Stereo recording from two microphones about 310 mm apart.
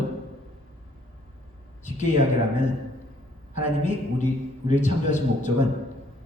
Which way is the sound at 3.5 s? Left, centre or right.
Left.